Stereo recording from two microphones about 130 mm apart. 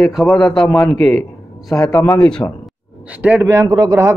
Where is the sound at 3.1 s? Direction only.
10° right (ahead or behind).